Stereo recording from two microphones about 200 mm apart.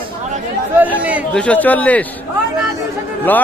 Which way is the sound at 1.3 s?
5° left (ahead or behind).